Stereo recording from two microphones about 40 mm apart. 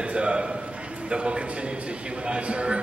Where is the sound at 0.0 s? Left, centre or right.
Right.